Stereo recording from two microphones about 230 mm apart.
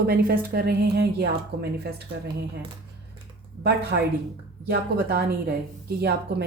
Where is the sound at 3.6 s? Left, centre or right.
Right.